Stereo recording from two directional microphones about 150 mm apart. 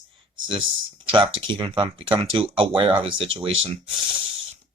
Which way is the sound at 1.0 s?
35° right (ahead or behind).